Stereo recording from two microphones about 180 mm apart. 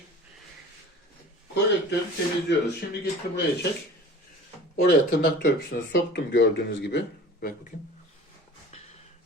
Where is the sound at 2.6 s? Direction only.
65° left (ahead or behind).